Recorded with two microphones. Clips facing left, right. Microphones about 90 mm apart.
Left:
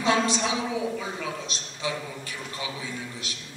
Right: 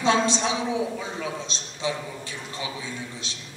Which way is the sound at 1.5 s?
25° right (ahead or behind).